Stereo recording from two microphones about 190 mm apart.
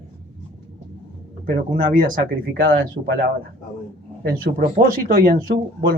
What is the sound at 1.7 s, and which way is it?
Speech, 25° right (ahead or behind).